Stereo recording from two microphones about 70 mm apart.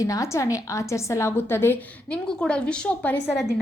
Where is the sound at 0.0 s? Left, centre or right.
Left.